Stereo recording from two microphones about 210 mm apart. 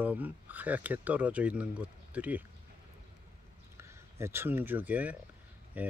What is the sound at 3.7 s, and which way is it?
Speech, 10° right (ahead or behind).